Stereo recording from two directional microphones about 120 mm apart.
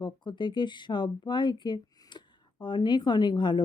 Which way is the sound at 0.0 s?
40° left (ahead or behind).